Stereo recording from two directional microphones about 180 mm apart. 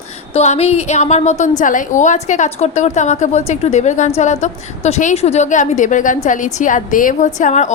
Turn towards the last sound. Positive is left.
turn(degrees=40)  # may be behind; listen again after turning